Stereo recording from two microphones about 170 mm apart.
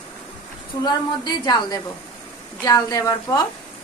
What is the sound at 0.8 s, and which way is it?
A woman's voice, 25° left (ahead or behind).